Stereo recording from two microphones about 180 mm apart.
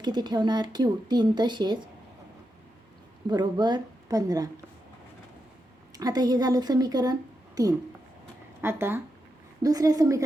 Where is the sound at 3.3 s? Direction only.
25° right (ahead or behind).